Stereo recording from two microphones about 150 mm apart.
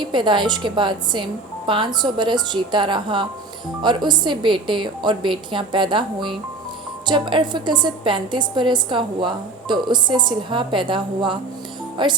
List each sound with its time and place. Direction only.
0.0 s a woman's voice: 30° right (ahead or behind)